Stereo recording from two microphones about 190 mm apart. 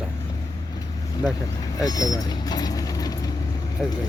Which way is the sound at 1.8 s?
20° left (ahead or behind).